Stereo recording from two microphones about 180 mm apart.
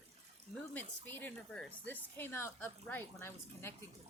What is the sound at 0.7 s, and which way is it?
Speech, 10° left (ahead or behind).